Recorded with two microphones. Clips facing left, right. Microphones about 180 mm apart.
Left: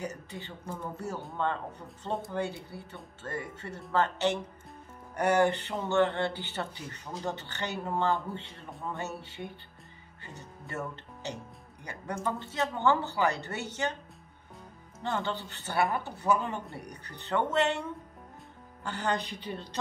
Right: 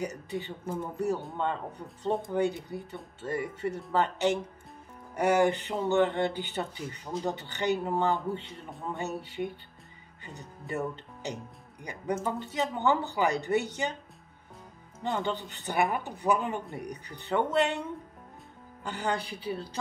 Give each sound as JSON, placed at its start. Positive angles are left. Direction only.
{"t": 0.0, "sound": "speech", "side_deg": -15}
{"t": 10.7, "sound": "speech", "side_deg": -15}
{"t": 15.0, "sound": "speech", "side_deg": -15}
{"t": 18.9, "sound": "speech", "side_deg": -10}